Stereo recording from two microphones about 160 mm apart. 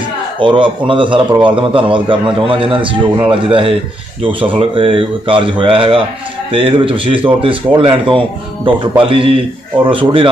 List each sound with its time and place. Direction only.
0.4 s a man's voice: 30° right (ahead or behind)